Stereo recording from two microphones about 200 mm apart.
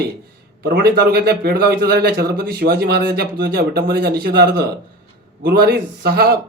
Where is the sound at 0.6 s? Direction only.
50° right (ahead or behind).